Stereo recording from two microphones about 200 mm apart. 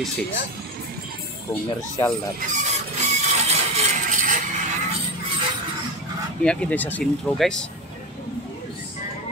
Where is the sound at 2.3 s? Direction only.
35° right (ahead or behind).